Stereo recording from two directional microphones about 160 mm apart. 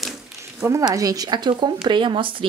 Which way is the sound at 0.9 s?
20° right (ahead or behind).